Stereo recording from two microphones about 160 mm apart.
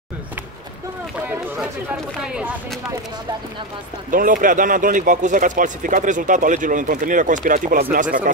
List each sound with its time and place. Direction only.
1.2 s speech: 10° right (ahead or behind)
4.1 s speech: 60° right (ahead or behind)